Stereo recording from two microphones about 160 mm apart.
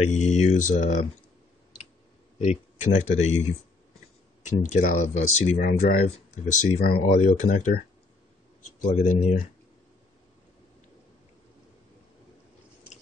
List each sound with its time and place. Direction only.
0.0 s speech: 45° left (ahead or behind)
2.3 s speech: 45° left (ahead or behind)
5.6 s speech: 70° left (ahead or behind)
6.1 s speech: 50° left (ahead or behind)
8.7 s speech: 55° left (ahead or behind)